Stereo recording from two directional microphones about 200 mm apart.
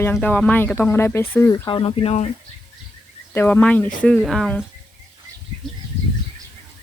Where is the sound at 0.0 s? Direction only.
10° left (ahead or behind).